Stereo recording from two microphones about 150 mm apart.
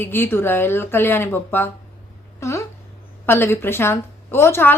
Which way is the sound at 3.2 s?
15° left (ahead or behind).